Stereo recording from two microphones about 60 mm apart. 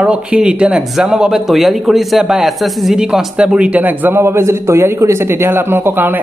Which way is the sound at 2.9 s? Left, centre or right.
Centre.